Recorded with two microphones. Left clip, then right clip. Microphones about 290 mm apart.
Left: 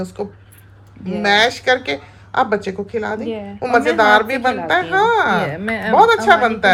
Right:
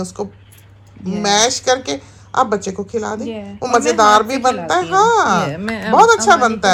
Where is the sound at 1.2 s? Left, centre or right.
Centre.